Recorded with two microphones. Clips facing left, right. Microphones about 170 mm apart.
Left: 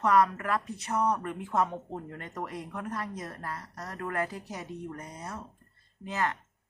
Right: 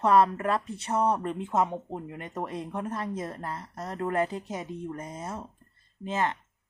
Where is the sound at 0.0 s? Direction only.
30° right (ahead or behind).